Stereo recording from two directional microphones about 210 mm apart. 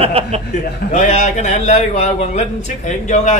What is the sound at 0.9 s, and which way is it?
A man's voice, 35° left (ahead or behind).